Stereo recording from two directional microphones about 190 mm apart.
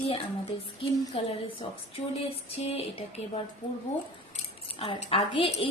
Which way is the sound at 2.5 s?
30° left (ahead or behind).